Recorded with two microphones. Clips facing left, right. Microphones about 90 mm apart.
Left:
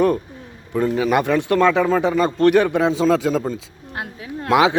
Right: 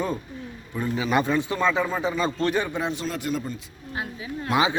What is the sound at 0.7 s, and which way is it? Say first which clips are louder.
Speech: left 7 dB; 70° left (ahead or behind).